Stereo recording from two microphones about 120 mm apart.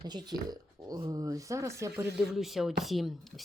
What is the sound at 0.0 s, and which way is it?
Speech, 35° right (ahead or behind).